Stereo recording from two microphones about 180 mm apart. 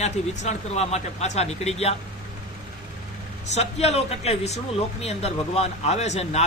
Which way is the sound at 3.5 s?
35° left (ahead or behind).